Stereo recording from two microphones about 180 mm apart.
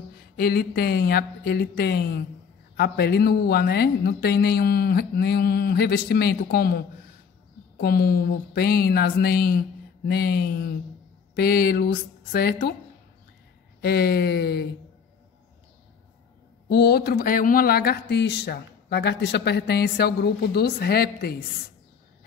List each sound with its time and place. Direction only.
0.4 s speech: 60° left (ahead or behind)
13.7 s speech: 60° left (ahead or behind)
16.6 s speech: 60° left (ahead or behind)